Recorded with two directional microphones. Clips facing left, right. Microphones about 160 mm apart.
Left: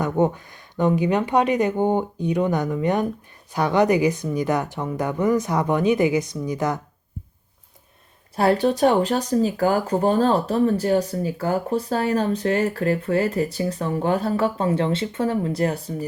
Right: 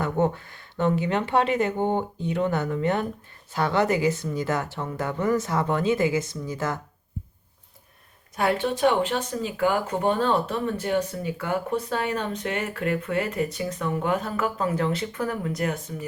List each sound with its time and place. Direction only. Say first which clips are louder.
0.0 s a woman's voice: left 3 dB; 15° left (ahead or behind)
8.4 s speech: left 5 dB; 35° left (ahead or behind)